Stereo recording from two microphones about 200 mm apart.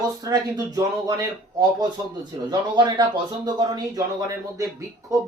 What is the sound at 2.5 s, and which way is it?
Speech, 20° right (ahead or behind).